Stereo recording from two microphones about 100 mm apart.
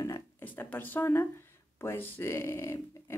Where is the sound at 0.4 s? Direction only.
15° left (ahead or behind).